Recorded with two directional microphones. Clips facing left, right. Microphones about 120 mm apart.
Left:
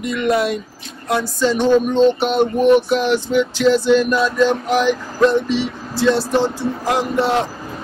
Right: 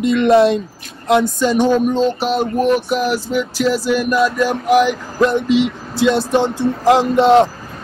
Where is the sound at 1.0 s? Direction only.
20° right (ahead or behind).